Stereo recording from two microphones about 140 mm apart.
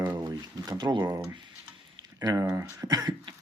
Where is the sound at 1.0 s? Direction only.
20° right (ahead or behind).